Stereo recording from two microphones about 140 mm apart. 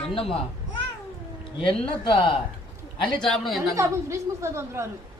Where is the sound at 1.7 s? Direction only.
40° left (ahead or behind).